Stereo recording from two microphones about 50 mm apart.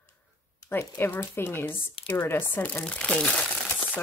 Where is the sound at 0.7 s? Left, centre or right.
Left.